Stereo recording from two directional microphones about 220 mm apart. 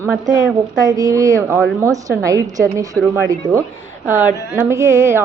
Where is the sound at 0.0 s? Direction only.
15° right (ahead or behind).